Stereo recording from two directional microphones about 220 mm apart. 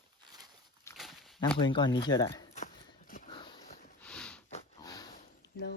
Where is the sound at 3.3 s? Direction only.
20° left (ahead or behind).